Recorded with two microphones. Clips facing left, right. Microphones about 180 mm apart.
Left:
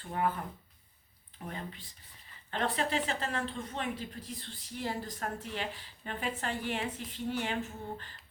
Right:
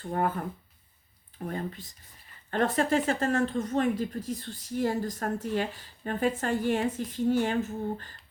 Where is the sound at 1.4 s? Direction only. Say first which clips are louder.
Right 8 dB; 45° right (ahead or behind).